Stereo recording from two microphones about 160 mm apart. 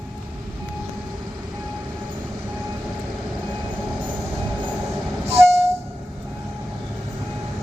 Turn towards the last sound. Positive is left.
turn(degrees=-40)  # may be behind; listen again after turning